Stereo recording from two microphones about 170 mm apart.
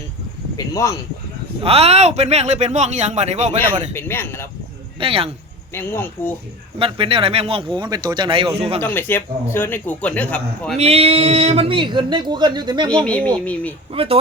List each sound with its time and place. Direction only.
0.5 s speech: 20° left (ahead or behind)
1.6 s speech: 35° right (ahead or behind)
3.9 s a man's voice: 15° left (ahead or behind)
4.9 s speech: 35° right (ahead or behind)
5.7 s a man's voice: 15° left (ahead or behind)
6.7 s speech: 30° right (ahead or behind)
7.8 s a man's voice: 20° right (ahead or behind)
8.8 s a man's voice: 10° left (ahead or behind)
10.8 s a man's voice: 35° right (ahead or behind)
13.1 s a man's voice: 10° left (ahead or behind)
13.9 s speech: 35° right (ahead or behind)